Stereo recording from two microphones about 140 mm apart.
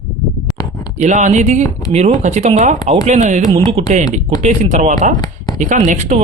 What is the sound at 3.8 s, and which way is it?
Speech, 45° right (ahead or behind).